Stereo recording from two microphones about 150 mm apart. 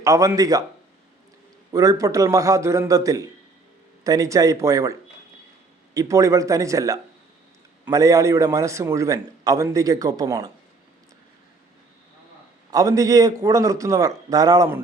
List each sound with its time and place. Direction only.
0.0 s a man's voice: 20° right (ahead or behind)
1.7 s a man's voice: 20° right (ahead or behind)
12.7 s a man's voice: 20° right (ahead or behind)